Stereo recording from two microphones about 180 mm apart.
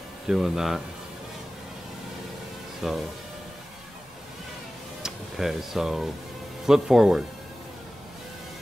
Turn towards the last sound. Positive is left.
turn(degrees=0)  # may be behind; listen again after turning